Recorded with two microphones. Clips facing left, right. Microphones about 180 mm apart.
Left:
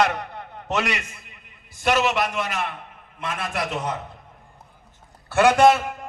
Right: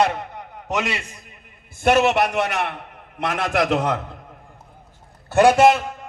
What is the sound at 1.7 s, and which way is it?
A man's voice, 55° right (ahead or behind).